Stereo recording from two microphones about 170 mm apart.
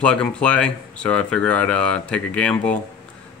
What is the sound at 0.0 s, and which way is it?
Speech, 5° left (ahead or behind).